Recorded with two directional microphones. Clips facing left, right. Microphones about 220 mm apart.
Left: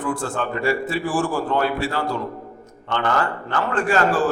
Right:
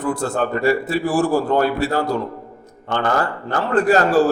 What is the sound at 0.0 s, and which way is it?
A man's voice, 40° right (ahead or behind).